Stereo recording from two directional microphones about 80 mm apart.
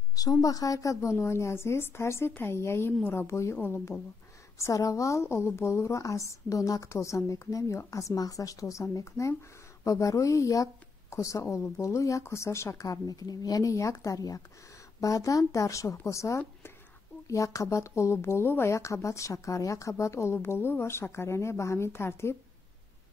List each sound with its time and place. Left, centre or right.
0.1 s speech: left
4.6 s speech: left
11.4 s speech: left